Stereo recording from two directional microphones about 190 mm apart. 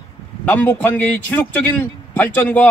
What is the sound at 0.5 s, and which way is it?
A man's voice, 10° left (ahead or behind).